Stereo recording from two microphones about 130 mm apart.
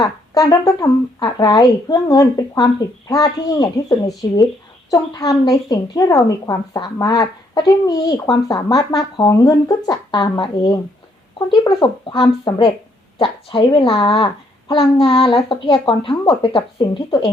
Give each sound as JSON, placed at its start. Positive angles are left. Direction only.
{"t": 0.0, "sound": "a woman's voice", "side_deg": 25}